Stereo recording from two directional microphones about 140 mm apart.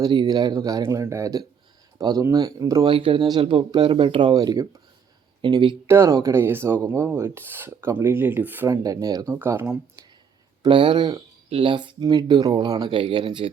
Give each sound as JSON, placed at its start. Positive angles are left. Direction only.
{"t": 0.0, "sound": "speech", "side_deg": -30}
{"t": 2.8, "sound": "speech", "side_deg": -40}
{"t": 5.9, "sound": "speech", "side_deg": -20}
{"t": 9.3, "sound": "speech", "side_deg": -15}
{"t": 10.6, "sound": "speech", "side_deg": -35}
{"t": 11.4, "sound": "speech", "side_deg": -40}